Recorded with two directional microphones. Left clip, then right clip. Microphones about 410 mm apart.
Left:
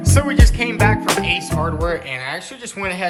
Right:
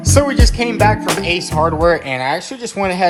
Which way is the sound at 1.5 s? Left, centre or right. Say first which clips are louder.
Right 8 dB; centre.